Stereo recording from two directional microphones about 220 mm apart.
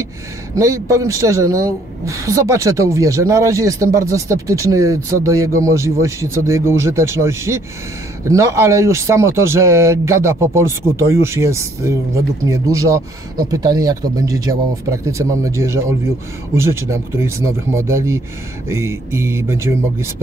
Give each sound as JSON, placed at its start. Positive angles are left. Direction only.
{"t": 0.6, "sound": "speech", "side_deg": -15}